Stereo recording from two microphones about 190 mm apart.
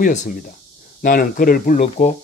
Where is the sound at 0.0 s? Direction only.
40° left (ahead or behind).